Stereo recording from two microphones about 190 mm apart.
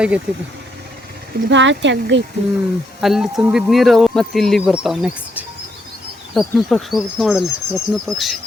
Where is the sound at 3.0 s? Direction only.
Centre (ahead or behind).